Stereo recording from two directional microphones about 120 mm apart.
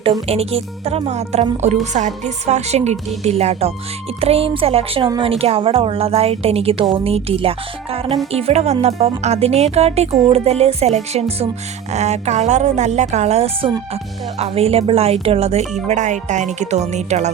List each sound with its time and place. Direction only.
0.3 s a woman's voice: 55° right (ahead or behind)
15.9 s a woman's voice: 90° right; by 17.2 s 70° right (ahead or behind)